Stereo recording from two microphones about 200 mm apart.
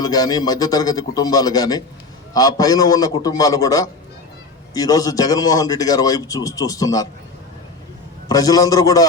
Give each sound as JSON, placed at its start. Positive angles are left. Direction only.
{"t": 0.0, "sound": "a man's voice", "side_deg": 20}
{"t": 8.3, "sound": "a man's voice", "side_deg": 20}